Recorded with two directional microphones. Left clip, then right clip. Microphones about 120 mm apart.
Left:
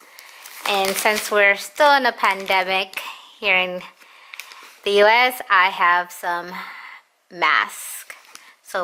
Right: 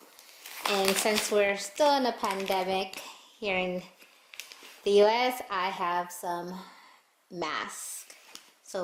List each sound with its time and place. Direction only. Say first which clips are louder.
0.6 s speech: left 7 dB; 20° right (ahead or behind)
1.6 s speech: left 10 dB; 20° right (ahead or behind)
3.0 s a sound: left 11 dB; 20° right (ahead or behind)
4.9 s speech: left 8 dB; 20° right (ahead or behind)
8.7 s speech: left 10 dB; 25° right (ahead or behind)